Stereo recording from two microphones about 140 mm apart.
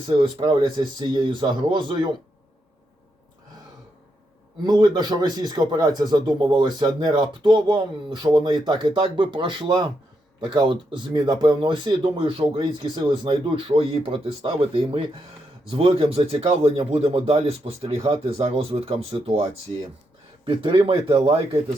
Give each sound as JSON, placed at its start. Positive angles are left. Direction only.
{"t": 0.2, "sound": "a man's voice", "side_deg": -35}
{"t": 4.6, "sound": "a man's voice", "side_deg": -30}